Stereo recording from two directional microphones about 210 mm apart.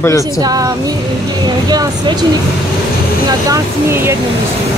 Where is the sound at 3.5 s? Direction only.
10° right (ahead or behind).